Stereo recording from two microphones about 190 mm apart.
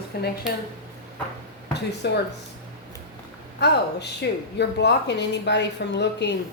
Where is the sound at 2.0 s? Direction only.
60° left (ahead or behind).